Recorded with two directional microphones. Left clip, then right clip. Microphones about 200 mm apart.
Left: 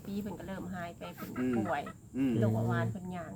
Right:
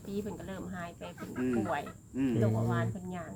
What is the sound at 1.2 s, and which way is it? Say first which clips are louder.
Speech: right 1 dB; 20° left (ahead or behind).